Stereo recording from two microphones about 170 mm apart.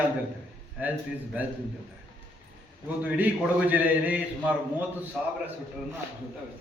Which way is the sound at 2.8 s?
10° right (ahead or behind).